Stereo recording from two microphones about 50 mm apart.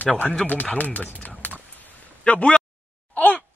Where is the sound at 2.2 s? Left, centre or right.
Left.